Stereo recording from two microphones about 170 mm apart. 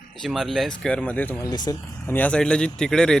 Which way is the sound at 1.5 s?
25° left (ahead or behind).